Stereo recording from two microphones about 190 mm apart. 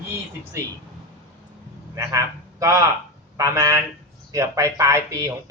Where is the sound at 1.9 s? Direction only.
15° right (ahead or behind).